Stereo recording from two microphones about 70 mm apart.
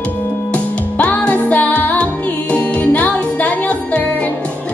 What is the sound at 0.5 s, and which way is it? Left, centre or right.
Music, centre.